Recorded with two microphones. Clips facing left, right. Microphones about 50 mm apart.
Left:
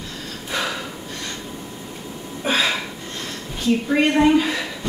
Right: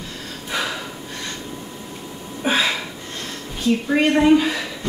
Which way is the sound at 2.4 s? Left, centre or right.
Centre.